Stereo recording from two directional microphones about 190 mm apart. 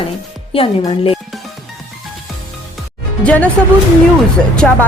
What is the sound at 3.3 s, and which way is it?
Speech, 5° left (ahead or behind).